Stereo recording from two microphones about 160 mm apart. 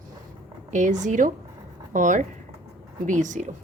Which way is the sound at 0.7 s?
50° right (ahead or behind).